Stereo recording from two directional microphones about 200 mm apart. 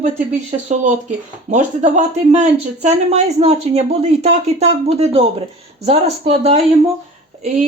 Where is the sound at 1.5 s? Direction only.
35° right (ahead or behind).